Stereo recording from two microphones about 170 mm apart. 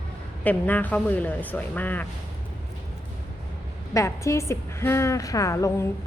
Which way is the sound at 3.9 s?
20° left (ahead or behind).